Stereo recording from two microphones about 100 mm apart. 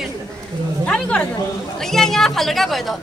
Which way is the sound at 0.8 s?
10° left (ahead or behind).